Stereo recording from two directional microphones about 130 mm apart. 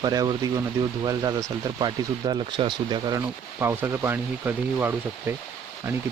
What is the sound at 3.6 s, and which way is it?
Speech, 20° right (ahead or behind).